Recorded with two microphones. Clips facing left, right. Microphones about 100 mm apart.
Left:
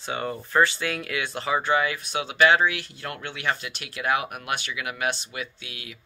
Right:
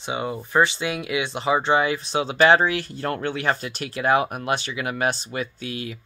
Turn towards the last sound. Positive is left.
turn(degrees=-35)  # may be behind; listen again after turning